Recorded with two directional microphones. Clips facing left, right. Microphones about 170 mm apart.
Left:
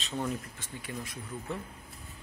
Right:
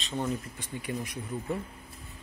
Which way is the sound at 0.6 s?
15° right (ahead or behind).